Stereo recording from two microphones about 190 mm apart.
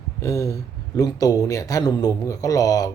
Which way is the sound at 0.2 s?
15° left (ahead or behind).